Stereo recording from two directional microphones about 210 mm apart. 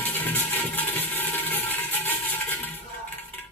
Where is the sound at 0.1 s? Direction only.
10° left (ahead or behind).